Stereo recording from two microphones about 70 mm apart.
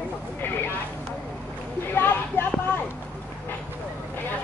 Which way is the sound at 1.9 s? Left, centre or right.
Left.